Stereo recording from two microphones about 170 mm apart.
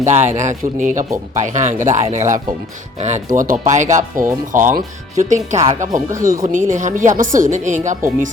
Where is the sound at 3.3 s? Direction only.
50° right (ahead or behind).